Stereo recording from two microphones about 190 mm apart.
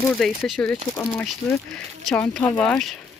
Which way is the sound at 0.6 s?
15° left (ahead or behind).